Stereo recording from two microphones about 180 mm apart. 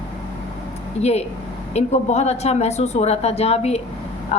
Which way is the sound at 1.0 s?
35° left (ahead or behind).